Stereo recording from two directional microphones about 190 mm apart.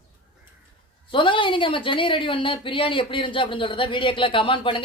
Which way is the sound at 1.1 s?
25° left (ahead or behind).